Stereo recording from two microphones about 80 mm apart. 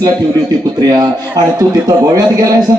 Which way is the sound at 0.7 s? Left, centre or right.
Right.